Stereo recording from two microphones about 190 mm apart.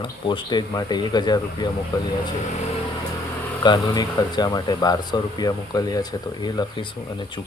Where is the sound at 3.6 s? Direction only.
20° left (ahead or behind).